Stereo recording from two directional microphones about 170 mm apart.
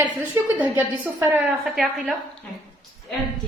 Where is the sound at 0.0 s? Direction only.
10° right (ahead or behind).